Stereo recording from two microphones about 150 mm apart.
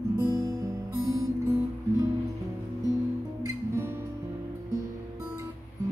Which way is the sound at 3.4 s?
15° right (ahead or behind).